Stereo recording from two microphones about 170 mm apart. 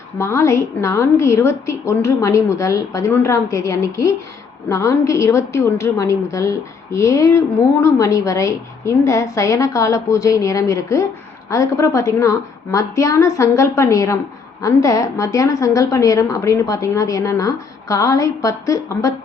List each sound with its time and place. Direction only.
0.2 s a woman's voice: 15° left (ahead or behind)